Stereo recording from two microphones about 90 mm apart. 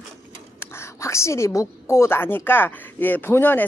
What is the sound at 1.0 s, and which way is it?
A woman's voice, 30° left (ahead or behind).